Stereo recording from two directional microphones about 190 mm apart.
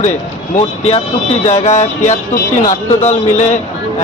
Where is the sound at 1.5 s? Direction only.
35° left (ahead or behind).